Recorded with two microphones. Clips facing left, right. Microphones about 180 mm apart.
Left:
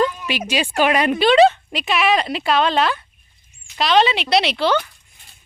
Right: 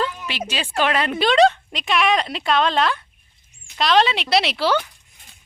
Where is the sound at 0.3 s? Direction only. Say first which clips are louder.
Left 6 dB; 15° left (ahead or behind).